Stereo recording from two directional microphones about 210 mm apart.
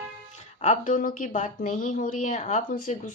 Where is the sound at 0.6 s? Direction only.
35° left (ahead or behind).